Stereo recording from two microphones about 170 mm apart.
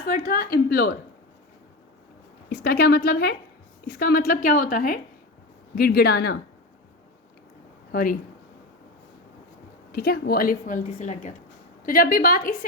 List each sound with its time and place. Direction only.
0.0 s a woman's voice: 60° left (ahead or behind)
2.5 s a woman's voice: 65° left (ahead or behind)
9.9 s a woman's voice: 65° left (ahead or behind); by 11.3 s 45° left (ahead or behind)
11.8 s a woman's voice: 55° left (ahead or behind)